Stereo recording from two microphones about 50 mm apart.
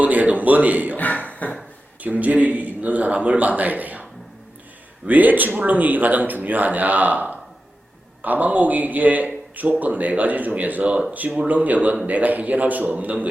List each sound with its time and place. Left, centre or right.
0.0 s a man's voice: right
0.9 s speech: left
2.0 s a man's voice: right
5.0 s a man's voice: right